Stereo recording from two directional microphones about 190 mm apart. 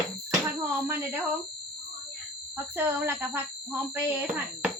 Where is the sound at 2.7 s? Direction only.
10° right (ahead or behind).